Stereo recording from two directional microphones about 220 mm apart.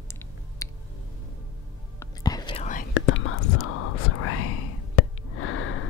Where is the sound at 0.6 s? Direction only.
15° left (ahead or behind).